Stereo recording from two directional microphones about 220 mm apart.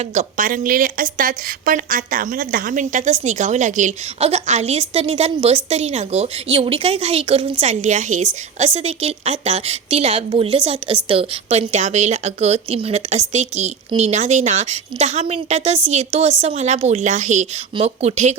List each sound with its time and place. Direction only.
0.0 s a woman's voice: 30° right (ahead or behind)